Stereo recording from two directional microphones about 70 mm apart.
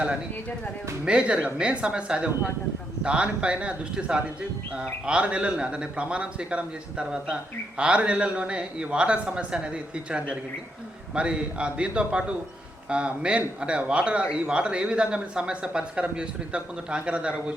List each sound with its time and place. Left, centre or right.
1.0 s a man's voice: centre